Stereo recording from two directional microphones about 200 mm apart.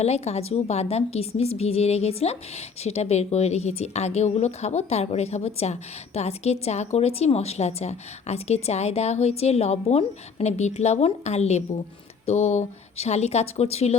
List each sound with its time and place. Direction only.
0.0 s a woman's voice: 30° left (ahead or behind)